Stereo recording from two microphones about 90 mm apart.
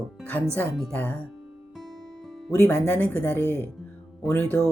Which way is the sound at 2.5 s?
25° left (ahead or behind).